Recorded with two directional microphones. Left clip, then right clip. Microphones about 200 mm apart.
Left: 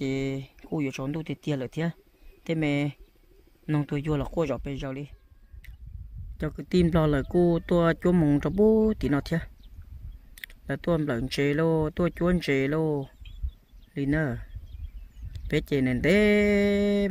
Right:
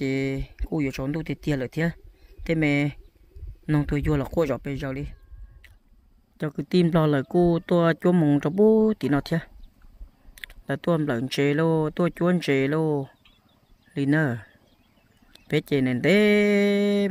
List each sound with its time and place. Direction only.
0.0 s speech: 15° right (ahead or behind)
6.3 s speech: 10° right (ahead or behind)